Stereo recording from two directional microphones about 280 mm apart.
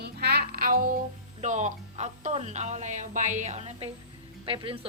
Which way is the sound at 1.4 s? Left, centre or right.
Right.